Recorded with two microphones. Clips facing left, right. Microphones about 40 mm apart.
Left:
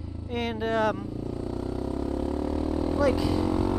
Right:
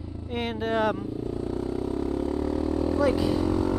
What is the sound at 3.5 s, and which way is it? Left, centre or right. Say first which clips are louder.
Didgeridoo: right 1 dB; left.